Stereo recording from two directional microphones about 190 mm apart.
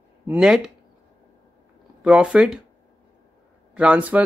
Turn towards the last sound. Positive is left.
turn(degrees=-5)  # may be behind; listen again after turning